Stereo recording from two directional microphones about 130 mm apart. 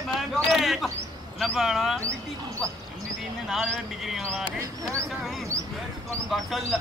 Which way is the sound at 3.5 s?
Centre (ahead or behind).